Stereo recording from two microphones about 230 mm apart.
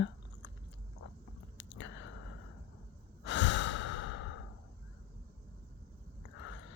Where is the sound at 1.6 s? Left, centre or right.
Left.